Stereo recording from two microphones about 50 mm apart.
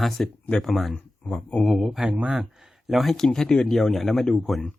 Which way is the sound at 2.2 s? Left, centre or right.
Right.